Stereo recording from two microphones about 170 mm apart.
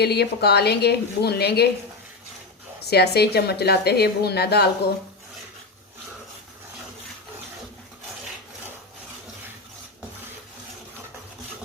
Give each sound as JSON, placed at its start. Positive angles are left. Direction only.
{"t": 0.0, "sound": "a woman's voice", "side_deg": 75}
{"t": 2.8, "sound": "a woman's voice", "side_deg": 75}